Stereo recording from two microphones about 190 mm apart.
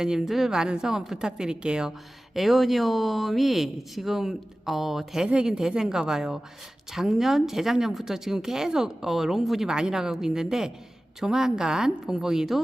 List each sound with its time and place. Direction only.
0.0 s speech: 5° right (ahead or behind)